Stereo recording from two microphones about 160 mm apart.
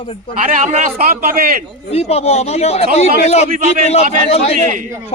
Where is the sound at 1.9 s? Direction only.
40° left (ahead or behind).